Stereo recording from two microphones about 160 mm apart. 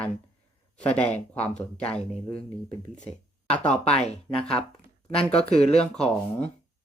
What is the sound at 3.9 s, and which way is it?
Speech, 40° left (ahead or behind).